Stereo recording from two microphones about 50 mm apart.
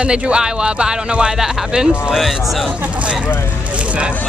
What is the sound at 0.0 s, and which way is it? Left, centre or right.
Speech, right.